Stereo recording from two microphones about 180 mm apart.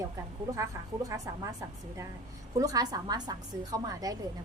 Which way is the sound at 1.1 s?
20° right (ahead or behind).